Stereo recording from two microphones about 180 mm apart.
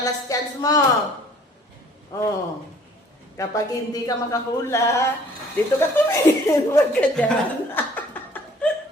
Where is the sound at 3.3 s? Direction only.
20° left (ahead or behind).